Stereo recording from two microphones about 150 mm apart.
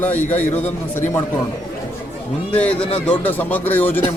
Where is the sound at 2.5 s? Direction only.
10° left (ahead or behind).